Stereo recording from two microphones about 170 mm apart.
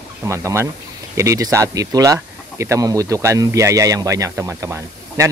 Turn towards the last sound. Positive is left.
turn(degrees=-15)  # may be behind; listen again after turning